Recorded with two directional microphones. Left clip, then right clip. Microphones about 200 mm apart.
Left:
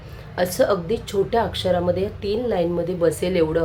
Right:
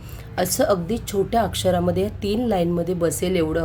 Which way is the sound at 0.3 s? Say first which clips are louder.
Left 1 dB; 35° right (ahead or behind).